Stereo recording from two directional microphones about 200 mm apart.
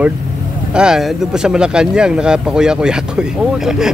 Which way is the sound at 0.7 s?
5° right (ahead or behind).